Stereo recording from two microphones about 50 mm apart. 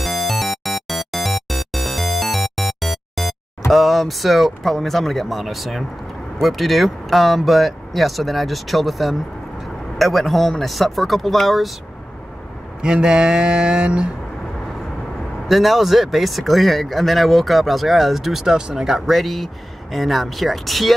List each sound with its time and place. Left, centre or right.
0.0 s music: centre
3.7 s speech: centre
12.8 s speech: centre
15.4 s speech: centre